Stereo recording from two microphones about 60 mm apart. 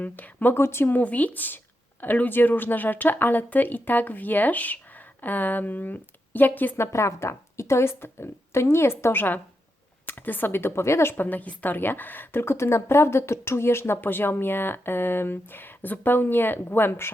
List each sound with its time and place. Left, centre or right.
0.0 s speech: left
0.5 s a woman's voice: left
0.9 s a woman's voice: left
6.7 s a woman's voice: left
11.1 s a woman's voice: left